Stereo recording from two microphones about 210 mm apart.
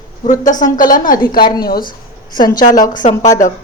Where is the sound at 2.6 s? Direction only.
40° left (ahead or behind).